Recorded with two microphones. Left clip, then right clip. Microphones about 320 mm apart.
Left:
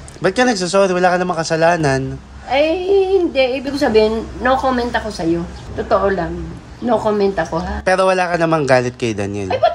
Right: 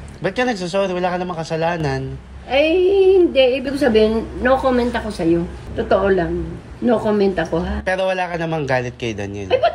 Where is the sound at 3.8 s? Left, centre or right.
Centre.